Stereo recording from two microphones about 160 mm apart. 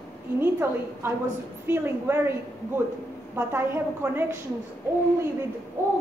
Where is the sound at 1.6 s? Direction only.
15° right (ahead or behind).